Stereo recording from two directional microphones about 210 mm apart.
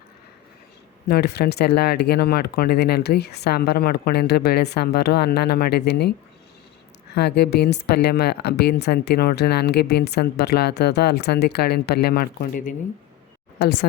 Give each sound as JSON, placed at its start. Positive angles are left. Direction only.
{"t": 1.0, "sound": "speech", "side_deg": 50}